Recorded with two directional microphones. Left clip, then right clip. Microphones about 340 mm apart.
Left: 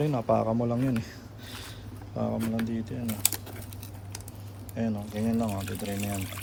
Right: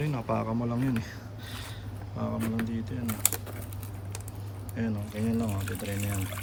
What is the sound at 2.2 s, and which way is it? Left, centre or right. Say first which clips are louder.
A man's voice: left 2 dB; centre.